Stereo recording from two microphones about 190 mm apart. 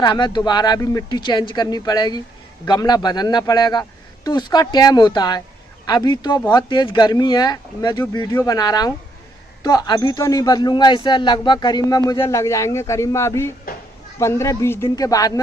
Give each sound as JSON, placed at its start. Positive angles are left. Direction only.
{"t": 0.0, "sound": "a man's voice", "side_deg": 25}